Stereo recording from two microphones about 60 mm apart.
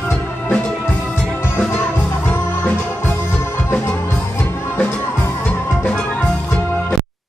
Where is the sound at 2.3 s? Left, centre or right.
Left.